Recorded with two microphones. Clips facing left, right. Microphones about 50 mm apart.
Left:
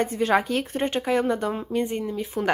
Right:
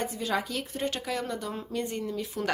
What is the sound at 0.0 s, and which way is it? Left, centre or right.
Speech, left.